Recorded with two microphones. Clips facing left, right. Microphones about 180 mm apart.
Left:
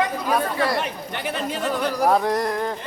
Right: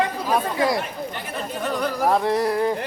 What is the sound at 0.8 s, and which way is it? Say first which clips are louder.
Speech: left 1 dB; 75° left (ahead or behind).